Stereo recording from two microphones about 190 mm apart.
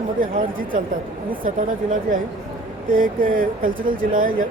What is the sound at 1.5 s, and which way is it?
Speech, 45° right (ahead or behind).